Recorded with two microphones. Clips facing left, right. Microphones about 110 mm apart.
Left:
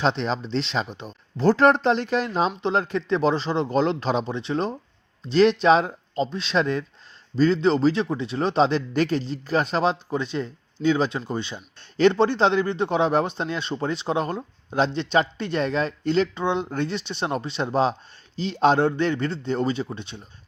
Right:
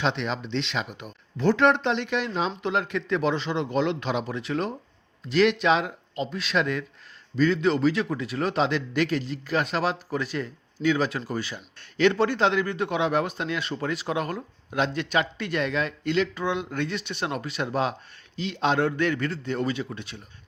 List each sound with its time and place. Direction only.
0.0 s speech: 35° left (ahead or behind)